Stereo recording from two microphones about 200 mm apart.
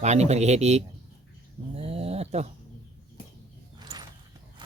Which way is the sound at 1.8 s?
30° right (ahead or behind).